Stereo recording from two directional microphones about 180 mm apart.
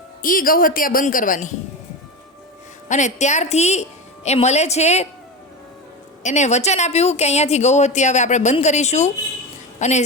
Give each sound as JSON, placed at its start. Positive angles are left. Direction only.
{"t": 0.2, "sound": "speech", "side_deg": 50}
{"t": 2.9, "sound": "speech", "side_deg": 40}
{"t": 6.2, "sound": "a woman's voice", "side_deg": 40}